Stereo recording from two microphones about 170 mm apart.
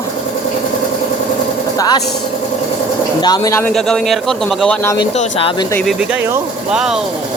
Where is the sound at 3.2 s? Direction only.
25° left (ahead or behind).